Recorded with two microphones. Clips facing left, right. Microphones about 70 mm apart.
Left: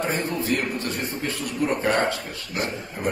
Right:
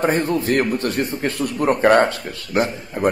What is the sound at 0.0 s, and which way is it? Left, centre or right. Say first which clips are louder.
Speech: right 7 dB; right.